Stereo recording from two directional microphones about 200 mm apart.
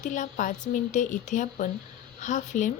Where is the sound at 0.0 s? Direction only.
40° left (ahead or behind).